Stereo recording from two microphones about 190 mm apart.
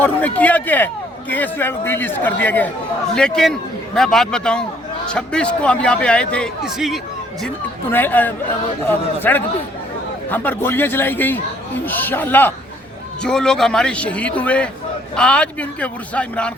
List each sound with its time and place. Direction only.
0.0 s a man's voice: 10° left (ahead or behind)
7.4 s a man's voice: 10° left (ahead or behind)